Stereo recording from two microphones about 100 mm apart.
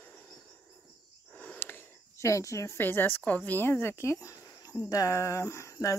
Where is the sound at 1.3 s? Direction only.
20° left (ahead or behind).